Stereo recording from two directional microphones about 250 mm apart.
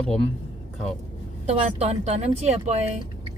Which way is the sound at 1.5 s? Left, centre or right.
Right.